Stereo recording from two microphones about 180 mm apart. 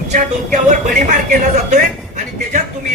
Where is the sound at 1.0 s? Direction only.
45° right (ahead or behind).